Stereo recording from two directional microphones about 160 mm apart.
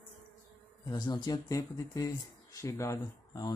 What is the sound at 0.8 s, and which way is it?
Speech, 25° left (ahead or behind).